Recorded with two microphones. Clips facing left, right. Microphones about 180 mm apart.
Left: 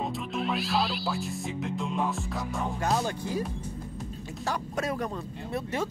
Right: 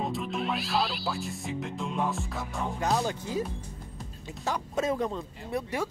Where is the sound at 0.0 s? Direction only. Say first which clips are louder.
Even; centre (ahead or behind).